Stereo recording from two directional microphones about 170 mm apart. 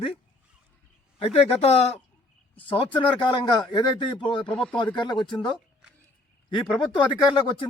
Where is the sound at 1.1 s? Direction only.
35° left (ahead or behind).